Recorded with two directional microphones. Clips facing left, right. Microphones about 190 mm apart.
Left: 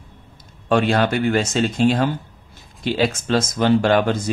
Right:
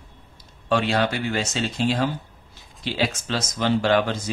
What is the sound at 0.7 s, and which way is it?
Speech, 50° left (ahead or behind).